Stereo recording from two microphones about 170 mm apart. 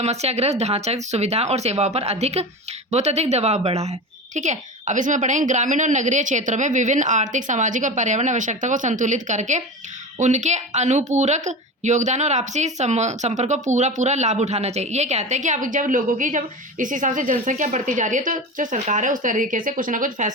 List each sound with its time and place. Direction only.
0.0 s a woman's voice: 40° right (ahead or behind)